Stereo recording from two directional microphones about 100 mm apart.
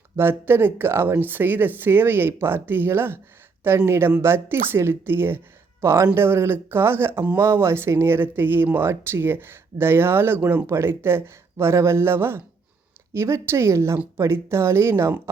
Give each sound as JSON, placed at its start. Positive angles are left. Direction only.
{"t": 0.2, "sound": "speech", "side_deg": -20}